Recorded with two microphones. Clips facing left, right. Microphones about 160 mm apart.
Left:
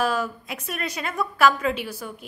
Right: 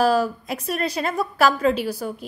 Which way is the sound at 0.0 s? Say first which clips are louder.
Right 6 dB; 35° right (ahead or behind).